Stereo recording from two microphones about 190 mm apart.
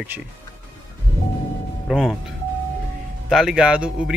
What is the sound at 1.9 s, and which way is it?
Speech, centre (ahead or behind).